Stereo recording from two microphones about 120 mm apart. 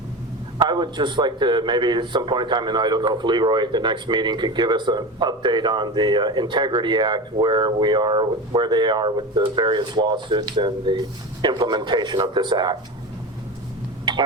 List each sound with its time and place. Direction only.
0.6 s a man's voice: 40° right (ahead or behind)